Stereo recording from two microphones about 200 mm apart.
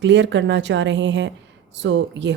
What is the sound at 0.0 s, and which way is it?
Speech, 65° right (ahead or behind).